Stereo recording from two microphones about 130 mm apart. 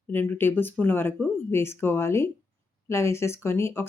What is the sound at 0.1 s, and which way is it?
Speech, 15° left (ahead or behind).